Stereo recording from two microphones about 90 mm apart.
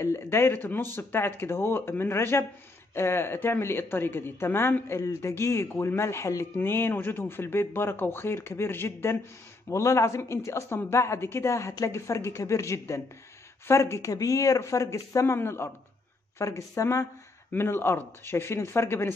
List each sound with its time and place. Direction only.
0.0 s speech: 30° left (ahead or behind)